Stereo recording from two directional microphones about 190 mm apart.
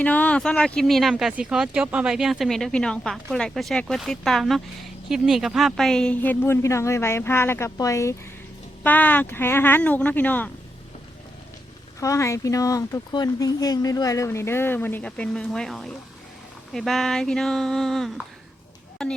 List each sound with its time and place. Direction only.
0.0 s speech: 10° left (ahead or behind)
11.9 s speech: 15° left (ahead or behind)